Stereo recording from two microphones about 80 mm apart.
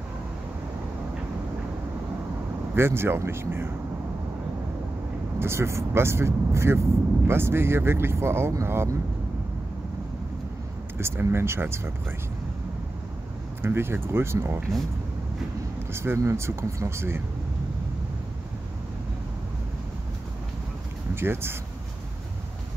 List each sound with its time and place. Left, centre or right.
2.7 s speech: right
5.4 s speech: right
11.0 s speech: right
13.6 s speech: right
15.9 s speech: right
21.1 s speech: right